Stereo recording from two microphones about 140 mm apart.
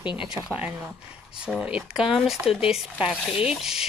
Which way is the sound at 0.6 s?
10° right (ahead or behind).